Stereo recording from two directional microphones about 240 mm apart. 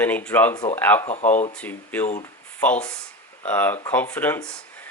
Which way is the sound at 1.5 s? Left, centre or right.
Centre.